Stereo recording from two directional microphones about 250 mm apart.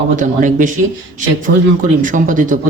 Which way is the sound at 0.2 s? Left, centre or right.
Right.